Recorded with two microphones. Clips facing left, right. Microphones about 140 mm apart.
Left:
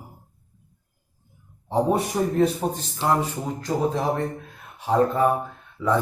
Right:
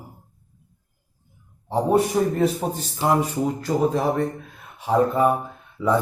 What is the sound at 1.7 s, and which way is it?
Speech, centre (ahead or behind).